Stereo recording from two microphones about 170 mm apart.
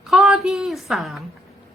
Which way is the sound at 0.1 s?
Centre (ahead or behind).